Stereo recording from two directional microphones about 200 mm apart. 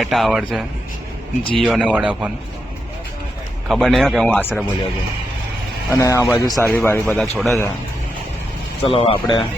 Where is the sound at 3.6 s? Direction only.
Centre (ahead or behind).